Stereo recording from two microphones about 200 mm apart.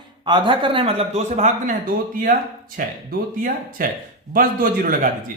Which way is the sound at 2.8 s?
45° right (ahead or behind).